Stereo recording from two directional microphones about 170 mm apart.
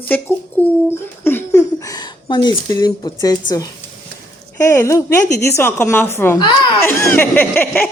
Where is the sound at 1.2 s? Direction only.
15° left (ahead or behind).